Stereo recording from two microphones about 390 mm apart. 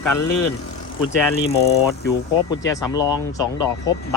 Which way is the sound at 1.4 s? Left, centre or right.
Left.